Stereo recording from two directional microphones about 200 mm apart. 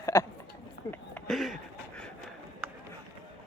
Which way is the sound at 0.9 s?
5° left (ahead or behind).